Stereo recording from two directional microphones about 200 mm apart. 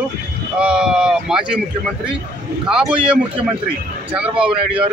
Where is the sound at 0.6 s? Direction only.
5° right (ahead or behind).